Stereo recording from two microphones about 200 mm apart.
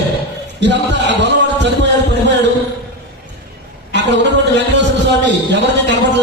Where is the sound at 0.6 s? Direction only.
60° right (ahead or behind).